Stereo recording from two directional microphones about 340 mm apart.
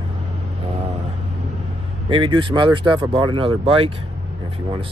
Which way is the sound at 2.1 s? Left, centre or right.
Centre.